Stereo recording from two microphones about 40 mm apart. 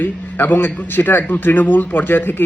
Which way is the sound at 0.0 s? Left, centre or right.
Left.